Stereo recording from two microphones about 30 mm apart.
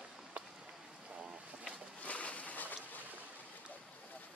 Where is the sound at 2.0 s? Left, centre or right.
Left.